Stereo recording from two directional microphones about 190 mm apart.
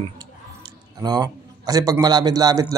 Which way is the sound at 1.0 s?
20° right (ahead or behind).